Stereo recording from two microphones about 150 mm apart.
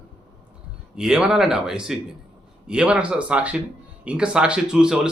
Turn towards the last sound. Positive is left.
turn(degrees=-5)  # may be behind; listen again after turning